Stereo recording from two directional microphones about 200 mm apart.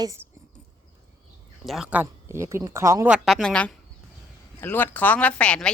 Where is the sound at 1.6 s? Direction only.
Centre (ahead or behind).